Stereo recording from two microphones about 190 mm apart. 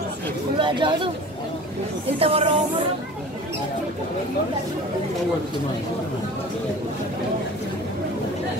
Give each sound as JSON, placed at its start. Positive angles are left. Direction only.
{"t": 0.6, "sound": "speech", "side_deg": -25}
{"t": 2.1, "sound": "speech", "side_deg": -30}